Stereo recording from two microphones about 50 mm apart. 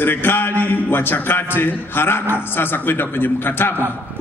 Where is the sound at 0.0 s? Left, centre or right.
Left.